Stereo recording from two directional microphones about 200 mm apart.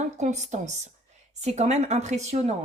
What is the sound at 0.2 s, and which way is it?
Speech, 35° right (ahead or behind).